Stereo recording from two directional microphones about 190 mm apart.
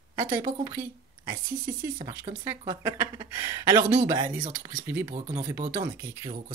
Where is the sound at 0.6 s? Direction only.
15° right (ahead or behind).